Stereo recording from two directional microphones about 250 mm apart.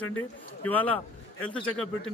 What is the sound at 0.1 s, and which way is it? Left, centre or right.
Speech, left.